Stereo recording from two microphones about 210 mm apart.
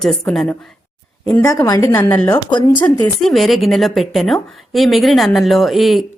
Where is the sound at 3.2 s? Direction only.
Centre (ahead or behind).